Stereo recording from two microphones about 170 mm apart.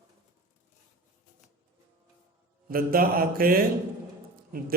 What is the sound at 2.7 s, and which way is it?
A man's voice, 60° right (ahead or behind).